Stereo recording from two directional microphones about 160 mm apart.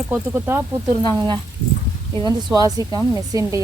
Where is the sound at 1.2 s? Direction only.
30° right (ahead or behind).